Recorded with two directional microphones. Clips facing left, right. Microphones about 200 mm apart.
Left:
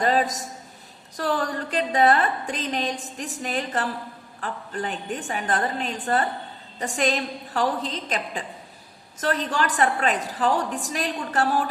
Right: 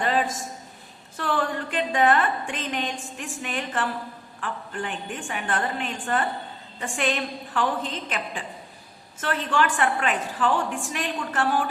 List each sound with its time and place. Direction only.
0.0 s a man's voice: 40° left (ahead or behind)